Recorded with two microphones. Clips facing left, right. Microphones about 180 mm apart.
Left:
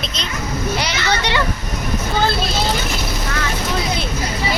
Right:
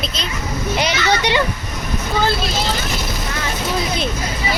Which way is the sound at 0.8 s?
20° right (ahead or behind).